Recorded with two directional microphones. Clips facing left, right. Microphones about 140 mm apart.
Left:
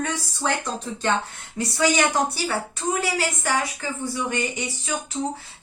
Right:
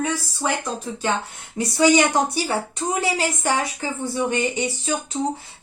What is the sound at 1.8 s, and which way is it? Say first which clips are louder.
Speech: right 4 dB; 20° right (ahead or behind).